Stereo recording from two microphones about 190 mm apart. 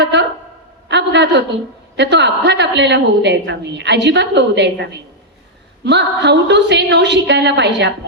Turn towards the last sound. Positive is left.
turn(degrees=-65)  # may be behind; listen again after turning